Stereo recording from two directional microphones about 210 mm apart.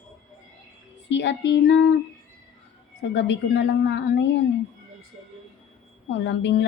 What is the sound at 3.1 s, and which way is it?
A woman's voice, 60° left (ahead or behind).